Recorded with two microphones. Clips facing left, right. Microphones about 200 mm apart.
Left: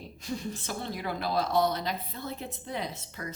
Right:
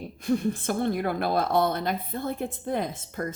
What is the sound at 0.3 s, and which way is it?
Speech, 55° right (ahead or behind).